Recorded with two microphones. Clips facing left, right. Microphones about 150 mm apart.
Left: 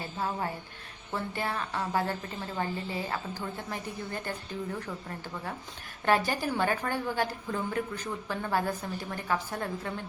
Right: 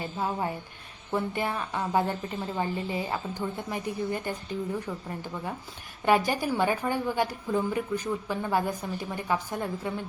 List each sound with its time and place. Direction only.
0.0 s a woman's voice: 15° right (ahead or behind)